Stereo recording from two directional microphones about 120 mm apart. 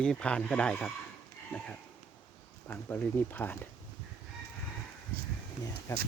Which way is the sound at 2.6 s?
15° left (ahead or behind).